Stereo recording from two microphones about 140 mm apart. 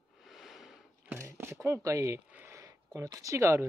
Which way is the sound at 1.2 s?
20° right (ahead or behind).